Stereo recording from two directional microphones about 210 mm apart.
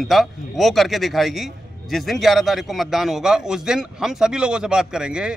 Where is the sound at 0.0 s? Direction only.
Centre (ahead or behind).